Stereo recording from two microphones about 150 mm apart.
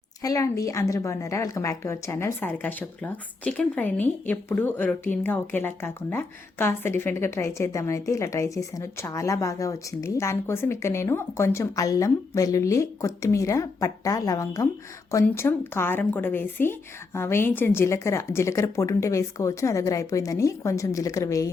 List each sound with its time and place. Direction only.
0.2 s a woman's voice: 20° left (ahead or behind)